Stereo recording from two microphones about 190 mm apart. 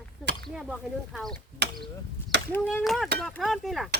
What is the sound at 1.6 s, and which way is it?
Speech, 65° right (ahead or behind).